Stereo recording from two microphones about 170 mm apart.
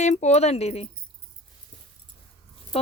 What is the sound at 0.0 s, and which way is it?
Speech, 45° left (ahead or behind).